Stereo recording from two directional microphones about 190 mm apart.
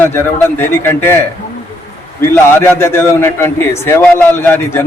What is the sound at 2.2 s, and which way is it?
A man's voice, 15° left (ahead or behind).